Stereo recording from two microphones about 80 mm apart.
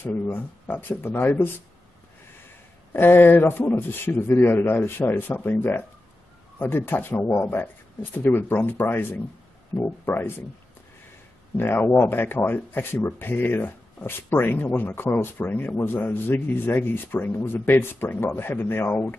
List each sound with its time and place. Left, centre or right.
0.0 s a man's voice: left
2.9 s a man's voice: left
11.5 s a man's voice: left